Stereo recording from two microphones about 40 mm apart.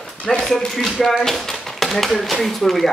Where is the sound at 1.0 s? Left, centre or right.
Centre.